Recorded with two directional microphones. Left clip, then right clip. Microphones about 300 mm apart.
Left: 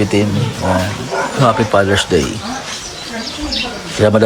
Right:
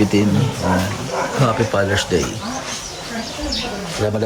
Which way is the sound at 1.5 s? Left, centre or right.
Centre.